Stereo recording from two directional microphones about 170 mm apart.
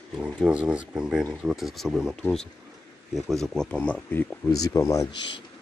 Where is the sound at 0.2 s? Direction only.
5° right (ahead or behind); by 5.0 s 20° left (ahead or behind).